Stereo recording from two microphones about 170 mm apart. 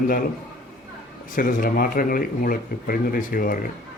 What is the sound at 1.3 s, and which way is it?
A man's voice, 55° left (ahead or behind).